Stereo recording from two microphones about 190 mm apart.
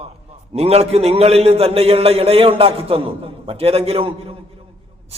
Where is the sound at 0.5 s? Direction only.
35° right (ahead or behind).